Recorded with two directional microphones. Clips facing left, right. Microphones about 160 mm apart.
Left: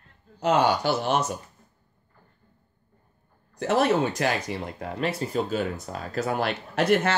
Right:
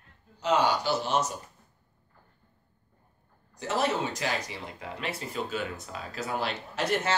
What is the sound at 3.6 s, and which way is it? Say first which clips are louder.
Speech: left 6 dB; 60° left (ahead or behind).